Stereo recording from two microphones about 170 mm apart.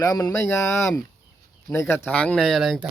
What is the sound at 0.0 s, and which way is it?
Speech, 20° left (ahead or behind).